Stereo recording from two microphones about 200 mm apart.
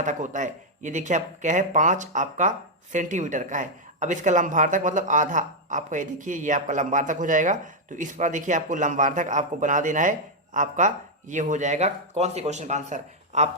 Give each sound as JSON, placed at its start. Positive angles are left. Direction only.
{"t": 0.0, "sound": "speech", "side_deg": -35}